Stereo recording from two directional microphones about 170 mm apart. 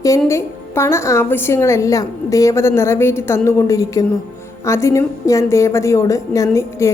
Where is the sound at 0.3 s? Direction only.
15° left (ahead or behind).